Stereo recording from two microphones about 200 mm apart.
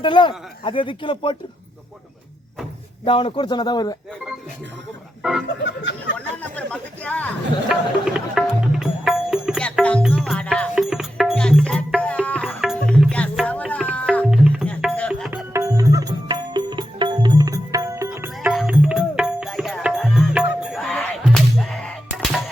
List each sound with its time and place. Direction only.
0.0 s speech: 25° left (ahead or behind)
3.0 s speech: 25° left (ahead or behind)
6.1 s speech: 5° left (ahead or behind)
7.7 s music: centre (ahead or behind)
14.3 s music: 5° right (ahead or behind)
15.3 s music: 15° right (ahead or behind); by 22.4 s 5° left (ahead or behind)